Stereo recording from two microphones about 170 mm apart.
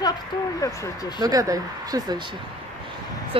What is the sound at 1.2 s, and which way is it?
Speech, 20° right (ahead or behind).